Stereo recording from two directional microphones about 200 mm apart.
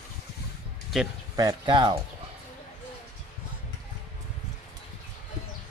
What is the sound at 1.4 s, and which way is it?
Speech, 20° right (ahead or behind).